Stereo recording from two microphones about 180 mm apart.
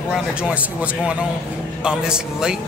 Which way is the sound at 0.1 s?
5° right (ahead or behind).